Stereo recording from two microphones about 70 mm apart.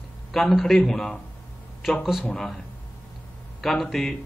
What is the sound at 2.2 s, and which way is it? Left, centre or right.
Speech, centre.